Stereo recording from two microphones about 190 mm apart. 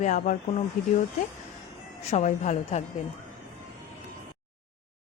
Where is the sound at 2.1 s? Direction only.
35° left (ahead or behind).